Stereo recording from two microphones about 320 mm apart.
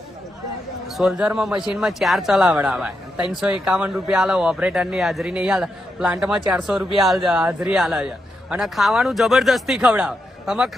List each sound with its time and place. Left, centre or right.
0.9 s speech: centre